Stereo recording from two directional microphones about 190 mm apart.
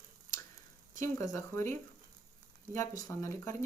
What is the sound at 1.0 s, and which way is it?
Speech, 15° left (ahead or behind).